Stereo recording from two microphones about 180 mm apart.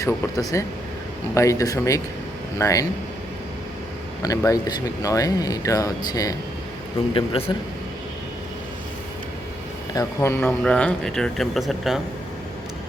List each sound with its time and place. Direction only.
0.0 s speech: 15° left (ahead or behind)
4.2 s speech: 20° left (ahead or behind)
7.1 s speech: 30° left (ahead or behind)
9.9 s speech: 15° left (ahead or behind); by 11.9 s centre (ahead or behind)